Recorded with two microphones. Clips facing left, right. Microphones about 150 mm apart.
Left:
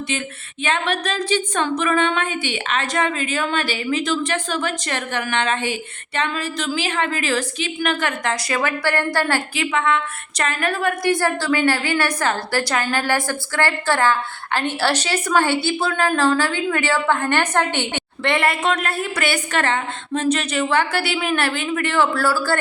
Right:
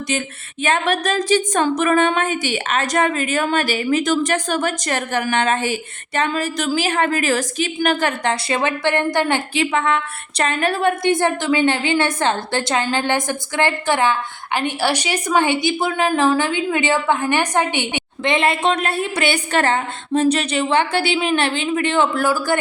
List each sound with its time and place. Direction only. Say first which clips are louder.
0.6 s a woman's voice: right 3 dB; 40° right (ahead or behind); by 9.6 s 20° right (ahead or behind)
9.7 s a woman's voice: right 1 dB; 35° right (ahead or behind); by 22.5 s 15° right (ahead or behind)